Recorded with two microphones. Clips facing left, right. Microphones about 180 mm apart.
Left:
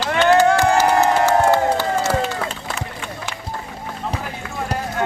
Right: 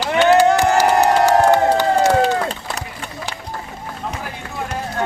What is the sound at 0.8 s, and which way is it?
Crowd, 15° right (ahead or behind).